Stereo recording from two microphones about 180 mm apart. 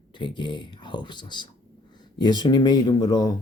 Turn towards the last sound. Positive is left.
turn(degrees=20)  # may be behind; listen again after turning